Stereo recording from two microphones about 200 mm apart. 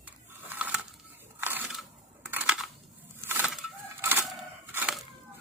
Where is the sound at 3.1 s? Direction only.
10° right (ahead or behind).